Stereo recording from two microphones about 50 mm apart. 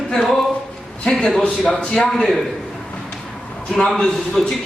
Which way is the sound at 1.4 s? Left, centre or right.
Centre.